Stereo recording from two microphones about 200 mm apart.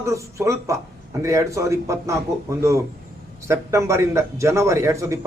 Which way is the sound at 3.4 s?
15° right (ahead or behind).